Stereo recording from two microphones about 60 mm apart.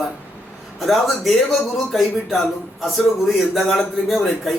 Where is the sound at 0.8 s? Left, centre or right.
Centre.